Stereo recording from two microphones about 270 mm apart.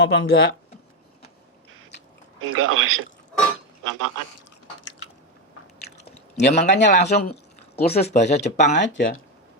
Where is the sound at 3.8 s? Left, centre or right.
Right.